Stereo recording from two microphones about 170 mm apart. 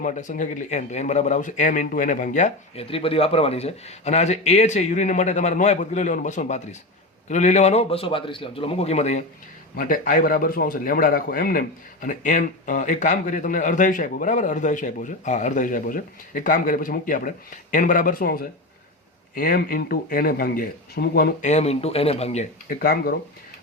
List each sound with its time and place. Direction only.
0.0 s a man's voice: 45° left (ahead or behind)
9.7 s speech: 55° left (ahead or behind)
12.0 s speech: 50° left (ahead or behind); by 21.3 s 65° left (ahead or behind)
21.4 s a man's voice: 40° left (ahead or behind)
22.8 s speech: 60° left (ahead or behind)